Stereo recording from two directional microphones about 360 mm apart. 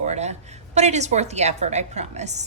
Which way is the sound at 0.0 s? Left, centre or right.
Centre.